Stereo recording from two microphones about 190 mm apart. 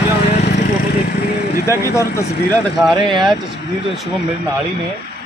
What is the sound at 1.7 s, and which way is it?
Speech, 15° left (ahead or behind).